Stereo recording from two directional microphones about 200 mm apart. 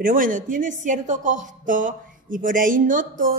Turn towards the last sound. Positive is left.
turn(degrees=-40)  # may be behind; listen again after turning